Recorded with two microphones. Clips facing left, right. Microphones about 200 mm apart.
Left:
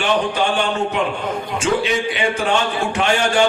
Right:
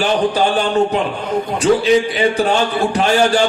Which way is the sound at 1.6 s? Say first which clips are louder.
Right 6 dB; 35° right (ahead or behind).